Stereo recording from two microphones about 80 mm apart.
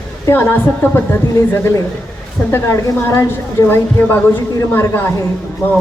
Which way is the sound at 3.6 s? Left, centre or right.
Left.